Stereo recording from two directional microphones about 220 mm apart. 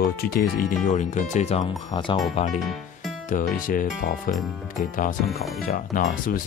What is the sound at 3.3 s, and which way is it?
Speech, 35° left (ahead or behind).